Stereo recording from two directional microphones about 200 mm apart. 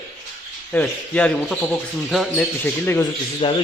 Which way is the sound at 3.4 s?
25° left (ahead or behind).